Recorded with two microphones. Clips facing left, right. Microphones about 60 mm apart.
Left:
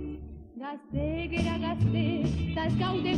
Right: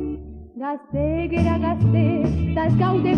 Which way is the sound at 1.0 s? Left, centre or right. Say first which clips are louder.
Right 9 dB; right.